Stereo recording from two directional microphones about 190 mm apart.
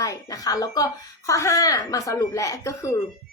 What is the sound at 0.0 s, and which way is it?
Speech, 20° left (ahead or behind).